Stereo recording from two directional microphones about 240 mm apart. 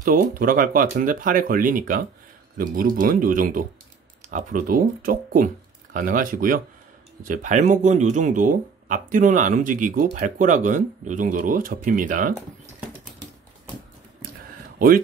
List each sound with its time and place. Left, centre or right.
0.0 s speech: right